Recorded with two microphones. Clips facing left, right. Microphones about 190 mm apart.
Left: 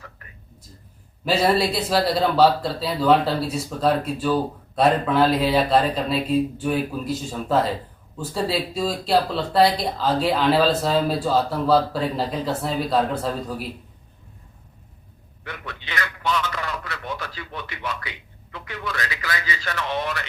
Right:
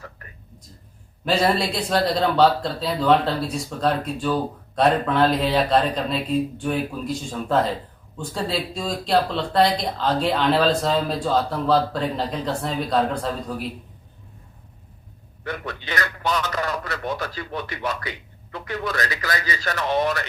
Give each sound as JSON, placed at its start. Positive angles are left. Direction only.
{"t": 1.2, "sound": "speech", "side_deg": 5}
{"t": 15.4, "sound": "a man's voice", "side_deg": -40}